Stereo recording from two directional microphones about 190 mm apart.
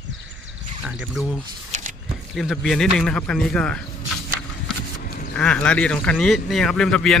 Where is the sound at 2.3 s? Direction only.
Centre (ahead or behind).